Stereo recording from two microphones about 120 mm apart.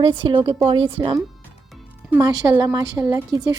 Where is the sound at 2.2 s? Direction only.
35° right (ahead or behind).